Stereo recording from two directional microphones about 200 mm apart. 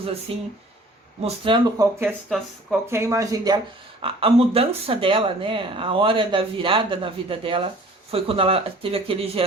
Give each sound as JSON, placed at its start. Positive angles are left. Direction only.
{"t": 0.0, "sound": "speech", "side_deg": -30}
{"t": 2.9, "sound": "speech", "side_deg": -15}
{"t": 4.0, "sound": "speech", "side_deg": -30}